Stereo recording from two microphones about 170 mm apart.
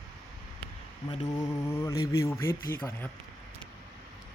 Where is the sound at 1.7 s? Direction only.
15° left (ahead or behind).